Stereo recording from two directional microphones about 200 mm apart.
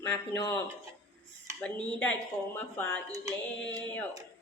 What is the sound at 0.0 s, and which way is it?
Speech, 15° left (ahead or behind).